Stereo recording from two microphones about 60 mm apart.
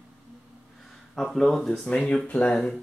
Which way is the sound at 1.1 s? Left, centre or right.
Centre.